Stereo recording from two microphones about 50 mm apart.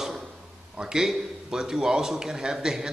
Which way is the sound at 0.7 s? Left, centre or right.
Centre.